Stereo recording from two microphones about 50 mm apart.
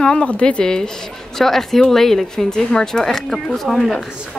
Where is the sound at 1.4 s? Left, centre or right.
Centre.